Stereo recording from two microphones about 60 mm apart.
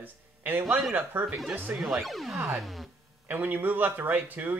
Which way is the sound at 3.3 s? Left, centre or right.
Right.